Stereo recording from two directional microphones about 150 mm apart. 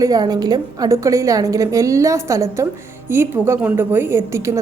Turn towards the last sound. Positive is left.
turn(degrees=-20)  # may be behind; listen again after turning